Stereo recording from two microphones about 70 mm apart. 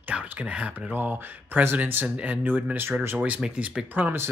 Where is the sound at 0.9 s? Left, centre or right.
Right.